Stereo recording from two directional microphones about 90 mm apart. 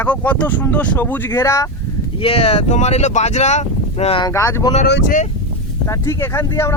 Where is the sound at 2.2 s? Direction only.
85° left.